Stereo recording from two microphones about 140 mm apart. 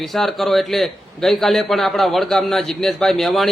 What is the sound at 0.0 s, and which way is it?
A man's voice, centre (ahead or behind).